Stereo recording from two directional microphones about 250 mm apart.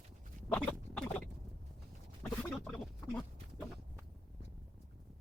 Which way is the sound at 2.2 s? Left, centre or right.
Centre.